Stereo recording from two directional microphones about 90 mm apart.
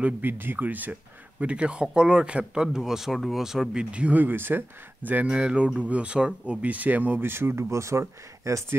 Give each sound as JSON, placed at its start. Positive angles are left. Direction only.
{"t": 0.0, "sound": "speech", "side_deg": -20}
{"t": 3.9, "sound": "speech", "side_deg": -15}